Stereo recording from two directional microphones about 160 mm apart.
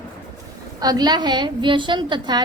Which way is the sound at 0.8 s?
25° right (ahead or behind).